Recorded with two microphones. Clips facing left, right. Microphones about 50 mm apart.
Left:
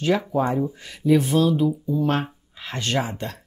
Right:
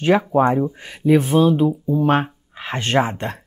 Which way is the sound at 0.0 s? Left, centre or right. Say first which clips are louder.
Right 6 dB; right.